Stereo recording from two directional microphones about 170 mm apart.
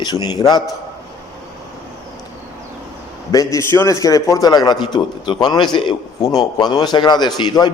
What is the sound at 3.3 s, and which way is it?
A man's voice, 20° left (ahead or behind).